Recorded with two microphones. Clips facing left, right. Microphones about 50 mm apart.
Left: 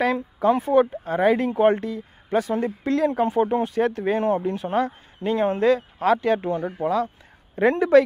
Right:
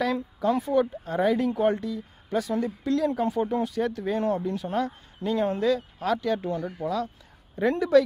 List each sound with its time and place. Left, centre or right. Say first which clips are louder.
0.0 s speech: left 5 dB; left